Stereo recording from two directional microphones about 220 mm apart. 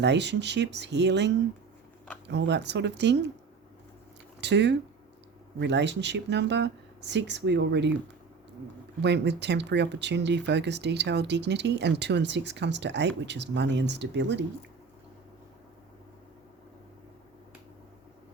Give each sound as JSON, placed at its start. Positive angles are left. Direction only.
{"t": 0.0, "sound": "speech", "side_deg": -50}
{"t": 4.4, "sound": "speech", "side_deg": -50}
{"t": 9.0, "sound": "speech", "side_deg": -50}